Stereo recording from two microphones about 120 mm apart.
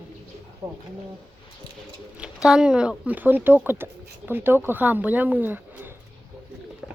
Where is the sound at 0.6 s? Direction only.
30° right (ahead or behind).